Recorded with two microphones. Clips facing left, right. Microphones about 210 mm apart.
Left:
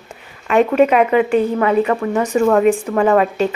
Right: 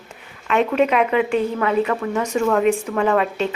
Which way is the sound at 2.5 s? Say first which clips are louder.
Left 3 dB; 45° left (ahead or behind).